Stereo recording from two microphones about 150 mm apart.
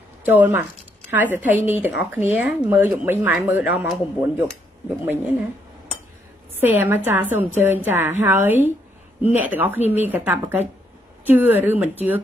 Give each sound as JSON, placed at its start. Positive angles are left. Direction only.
{"t": 0.2, "sound": "speech", "side_deg": -10}
{"t": 6.5, "sound": "a woman's voice", "side_deg": -15}